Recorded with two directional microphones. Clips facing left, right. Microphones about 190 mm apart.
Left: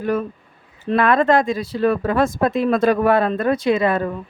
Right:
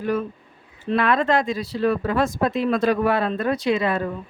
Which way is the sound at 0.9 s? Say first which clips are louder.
Left 4 dB; 50° left (ahead or behind).